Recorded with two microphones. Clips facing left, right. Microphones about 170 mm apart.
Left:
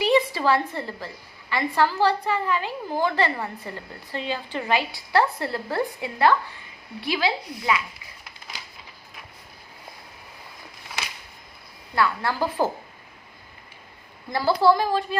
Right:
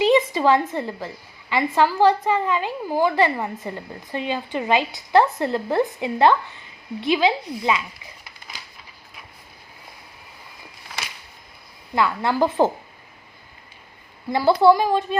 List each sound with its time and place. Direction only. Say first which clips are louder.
0.0 s a sound: right 3 dB; 20° right (ahead or behind)
0.7 s a woman's voice: right 5 dB; 15° right (ahead or behind)
11.9 s speech: right 4 dB; 20° right (ahead or behind)
14.3 s a woman's voice: right 4 dB; 15° right (ahead or behind)